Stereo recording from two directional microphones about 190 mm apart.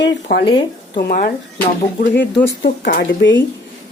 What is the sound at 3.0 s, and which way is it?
Speech, 70° left (ahead or behind).